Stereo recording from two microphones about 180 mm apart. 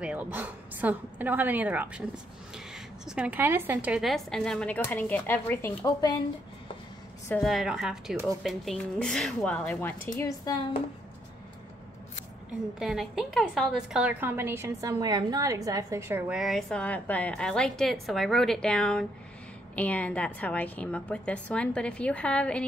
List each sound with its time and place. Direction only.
0.0 s a woman's voice: 10° right (ahead or behind); by 6.1 s 15° left (ahead or behind)
7.4 s a woman's voice: centre (ahead or behind); by 10.8 s 20° left (ahead or behind)
12.7 s a woman's voice: centre (ahead or behind)